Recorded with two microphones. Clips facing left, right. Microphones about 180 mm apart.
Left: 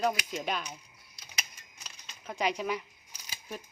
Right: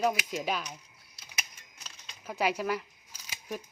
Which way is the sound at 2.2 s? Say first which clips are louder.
Right 1 dB; 5° right (ahead or behind).